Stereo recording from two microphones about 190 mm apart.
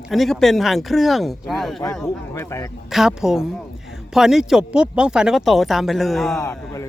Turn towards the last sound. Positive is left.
turn(degrees=15)  # may be behind; listen again after turning